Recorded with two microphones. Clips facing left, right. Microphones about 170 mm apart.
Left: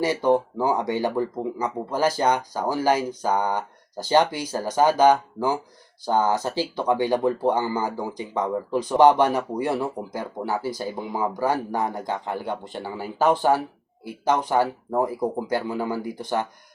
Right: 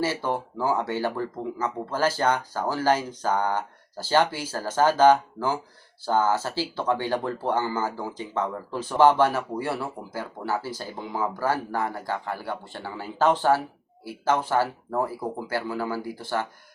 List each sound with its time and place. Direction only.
0.0 s speech: 15° left (ahead or behind)